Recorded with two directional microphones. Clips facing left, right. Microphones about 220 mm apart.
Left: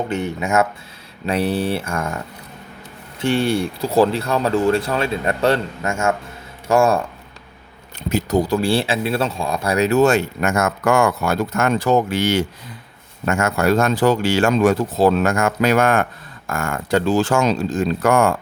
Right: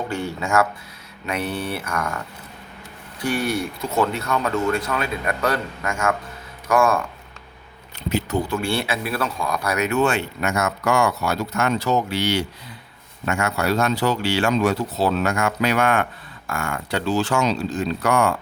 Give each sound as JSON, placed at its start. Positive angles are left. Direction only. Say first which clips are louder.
{"t": 0.1, "sound": "speech", "louder": "left 3 dB", "side_deg": 20}
{"t": 1.3, "sound": "speech", "louder": "left 6 dB", "side_deg": 30}
{"t": 8.1, "sound": "speech", "louder": "left 5 dB", "side_deg": 40}